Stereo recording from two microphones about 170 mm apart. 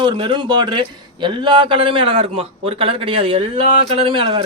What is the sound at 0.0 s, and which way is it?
A man's voice, 30° right (ahead or behind).